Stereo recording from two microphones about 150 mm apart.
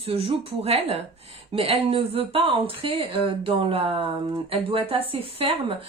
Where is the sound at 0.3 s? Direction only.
40° right (ahead or behind).